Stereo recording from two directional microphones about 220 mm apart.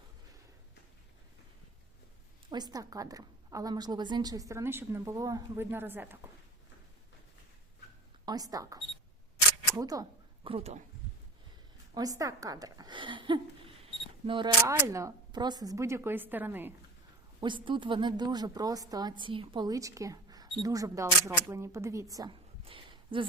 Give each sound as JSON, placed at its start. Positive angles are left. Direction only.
{"t": 2.5, "sound": "a woman's voice", "side_deg": -20}
{"t": 8.2, "sound": "speech", "side_deg": -15}
{"t": 11.9, "sound": "a woman's voice", "side_deg": -15}
{"t": 17.4, "sound": "a woman's voice", "side_deg": -20}